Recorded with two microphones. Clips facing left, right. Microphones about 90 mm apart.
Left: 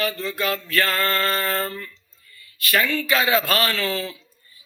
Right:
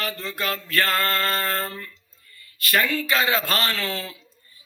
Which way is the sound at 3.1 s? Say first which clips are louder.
Left 3 dB; 35° right (ahead or behind).